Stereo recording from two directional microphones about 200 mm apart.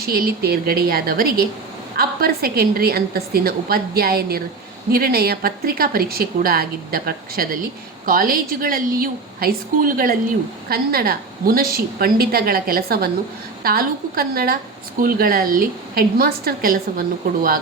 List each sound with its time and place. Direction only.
0.0 s a woman's voice: 50° right (ahead or behind)